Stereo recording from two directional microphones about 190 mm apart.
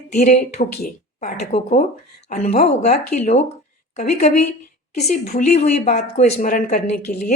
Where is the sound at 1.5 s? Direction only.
30° left (ahead or behind).